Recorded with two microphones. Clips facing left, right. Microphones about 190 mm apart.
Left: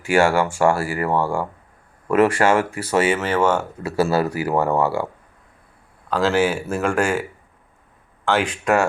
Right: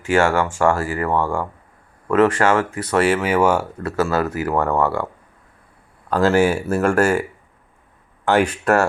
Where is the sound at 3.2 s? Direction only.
10° right (ahead or behind).